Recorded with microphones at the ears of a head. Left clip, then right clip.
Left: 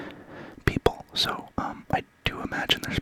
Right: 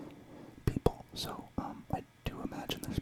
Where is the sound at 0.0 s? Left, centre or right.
Left.